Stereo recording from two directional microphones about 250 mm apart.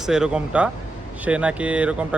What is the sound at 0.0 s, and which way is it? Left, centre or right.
Speech, centre.